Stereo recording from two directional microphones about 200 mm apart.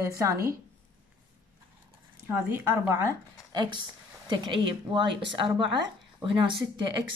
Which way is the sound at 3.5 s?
20° right (ahead or behind).